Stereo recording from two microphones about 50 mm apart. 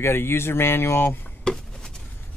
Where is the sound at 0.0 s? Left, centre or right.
Left.